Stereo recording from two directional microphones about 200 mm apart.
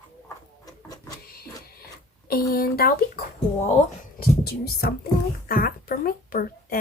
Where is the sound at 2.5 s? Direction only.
50° left (ahead or behind).